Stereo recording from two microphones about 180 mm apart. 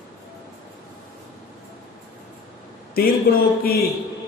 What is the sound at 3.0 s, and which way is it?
Speech, 55° left (ahead or behind).